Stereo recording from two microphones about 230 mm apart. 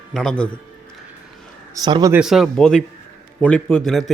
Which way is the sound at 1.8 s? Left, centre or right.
Centre.